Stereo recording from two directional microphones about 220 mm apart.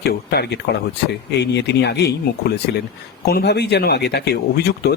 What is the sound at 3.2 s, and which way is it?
Speech, 45° left (ahead or behind).